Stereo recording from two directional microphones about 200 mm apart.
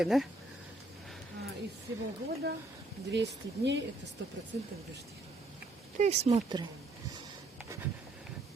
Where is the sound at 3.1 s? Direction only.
60° right (ahead or behind).